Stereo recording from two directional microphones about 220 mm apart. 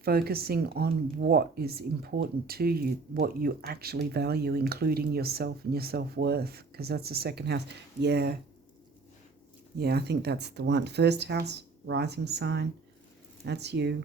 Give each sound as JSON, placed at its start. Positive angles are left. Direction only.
{"t": 0.0, "sound": "speech", "side_deg": -45}
{"t": 9.7, "sound": "speech", "side_deg": -45}